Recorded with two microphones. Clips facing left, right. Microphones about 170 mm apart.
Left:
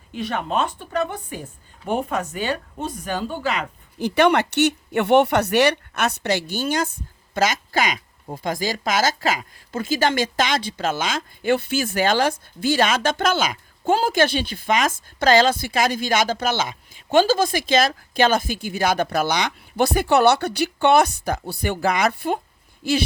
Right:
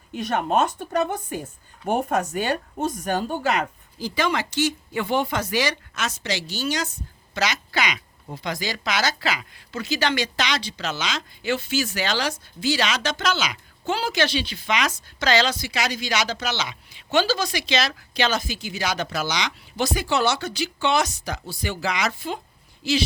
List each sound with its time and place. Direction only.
0.1 s a woman's voice: 45° right (ahead or behind)
3.9 s speech: 65° left (ahead or behind)